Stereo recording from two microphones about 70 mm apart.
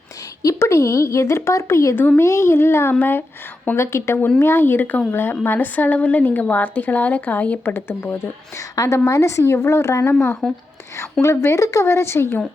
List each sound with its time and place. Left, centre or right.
0.4 s a woman's voice: left
2.0 s a woman's voice: left
2.2 s a child's voice: left
3.8 s a child's voice: left
8.5 s a woman's voice: left